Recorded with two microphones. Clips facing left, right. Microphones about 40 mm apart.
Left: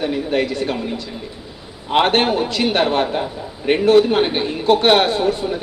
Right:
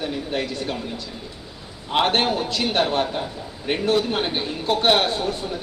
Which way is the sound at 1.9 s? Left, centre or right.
Left.